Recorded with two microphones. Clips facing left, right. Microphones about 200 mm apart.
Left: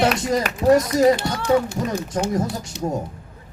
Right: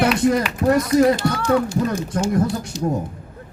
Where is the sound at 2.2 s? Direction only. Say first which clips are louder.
Right 3 dB; 60° left (ahead or behind).